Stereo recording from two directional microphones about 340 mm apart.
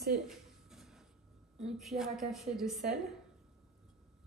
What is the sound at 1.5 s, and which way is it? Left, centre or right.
Speech, centre.